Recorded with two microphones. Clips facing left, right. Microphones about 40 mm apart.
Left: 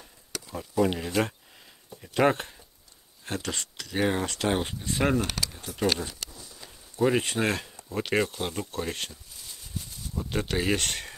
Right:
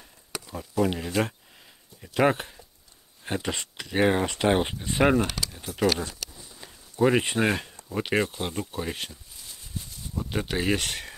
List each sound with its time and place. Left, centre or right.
0.6 s speech: centre
3.3 s speech: centre
6.3 s a sound: centre
7.9 s speech: centre